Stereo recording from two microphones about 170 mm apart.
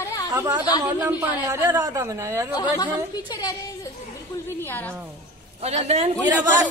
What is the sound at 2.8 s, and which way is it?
Speech, 25° left (ahead or behind).